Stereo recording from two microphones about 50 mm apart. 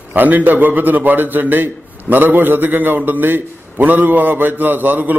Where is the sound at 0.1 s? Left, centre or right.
Right.